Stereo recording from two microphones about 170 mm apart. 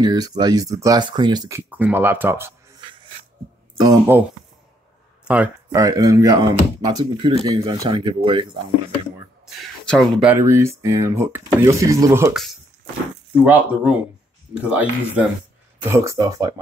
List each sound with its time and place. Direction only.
0.0 s speech: 25° right (ahead or behind)
1.7 s speech: 10° right (ahead or behind)
3.8 s speech: 20° right (ahead or behind)
5.2 s speech: 10° right (ahead or behind)
5.7 s speech: 20° right (ahead or behind)
9.6 s speech: 5° left (ahead or behind)
10.2 s speech: 15° right (ahead or behind)
13.4 s speech: 10° right (ahead or behind)